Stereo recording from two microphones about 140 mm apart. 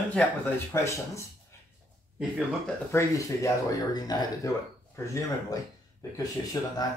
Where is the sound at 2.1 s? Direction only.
Centre (ahead or behind).